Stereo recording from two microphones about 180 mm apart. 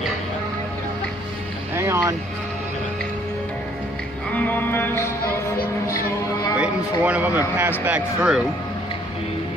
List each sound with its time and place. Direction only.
1.8 s boat: 15° right (ahead or behind)
4.3 s music: 10° left (ahead or behind)
6.6 s a man's voice: 10° right (ahead or behind)